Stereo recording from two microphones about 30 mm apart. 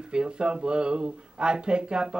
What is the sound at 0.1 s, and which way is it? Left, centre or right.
Speech, right.